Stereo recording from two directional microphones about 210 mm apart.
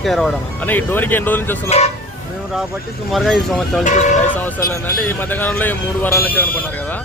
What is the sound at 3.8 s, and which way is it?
Speech, 35° left (ahead or behind).